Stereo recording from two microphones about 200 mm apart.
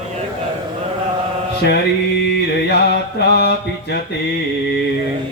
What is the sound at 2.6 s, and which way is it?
Mantra, 55° left (ahead or behind).